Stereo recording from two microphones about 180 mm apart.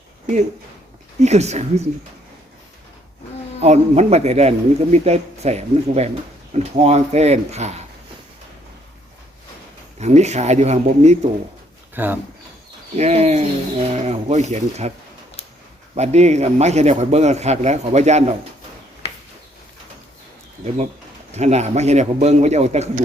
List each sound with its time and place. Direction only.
1.2 s a man's voice: 35° right (ahead or behind)
3.6 s a man's voice: 35° right (ahead or behind)
10.0 s a man's voice: 40° right (ahead or behind)
11.9 s speech: 10° right (ahead or behind)
13.0 s a man's voice: 35° right (ahead or behind)
16.0 s a man's voice: 40° right (ahead or behind)
21.3 s a man's voice: 40° right (ahead or behind)